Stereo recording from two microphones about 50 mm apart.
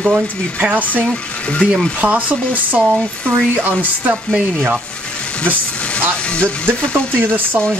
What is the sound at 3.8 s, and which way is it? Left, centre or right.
Speech, right.